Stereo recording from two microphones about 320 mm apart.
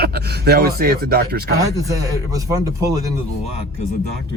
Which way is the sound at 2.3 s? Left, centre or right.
Centre.